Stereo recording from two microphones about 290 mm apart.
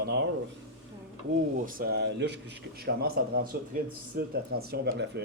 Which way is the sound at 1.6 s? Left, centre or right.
Right.